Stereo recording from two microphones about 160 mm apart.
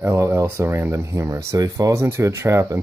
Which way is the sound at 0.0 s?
15° right (ahead or behind).